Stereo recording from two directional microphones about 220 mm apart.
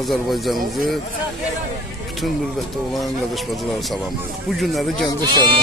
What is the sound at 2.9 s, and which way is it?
Speech, centre (ahead or behind).